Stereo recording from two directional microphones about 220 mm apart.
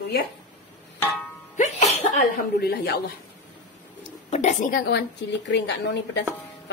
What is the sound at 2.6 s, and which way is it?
Speech, 45° left (ahead or behind).